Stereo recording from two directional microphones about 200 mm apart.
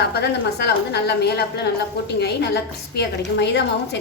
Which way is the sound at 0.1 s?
55° left (ahead or behind).